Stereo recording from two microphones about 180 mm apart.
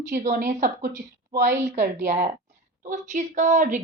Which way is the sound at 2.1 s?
40° right (ahead or behind).